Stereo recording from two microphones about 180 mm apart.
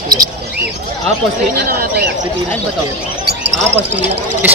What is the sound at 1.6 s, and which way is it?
Speech, 55° right (ahead or behind).